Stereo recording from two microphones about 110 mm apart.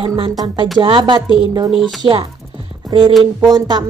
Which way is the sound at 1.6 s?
Centre (ahead or behind).